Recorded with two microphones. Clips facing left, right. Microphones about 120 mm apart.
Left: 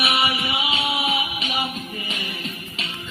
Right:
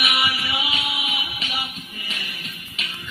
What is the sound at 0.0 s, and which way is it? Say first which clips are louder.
Music: left 3 dB; 30° left (ahead or behind).